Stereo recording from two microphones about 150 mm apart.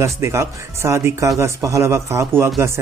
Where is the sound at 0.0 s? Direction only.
20° right (ahead or behind).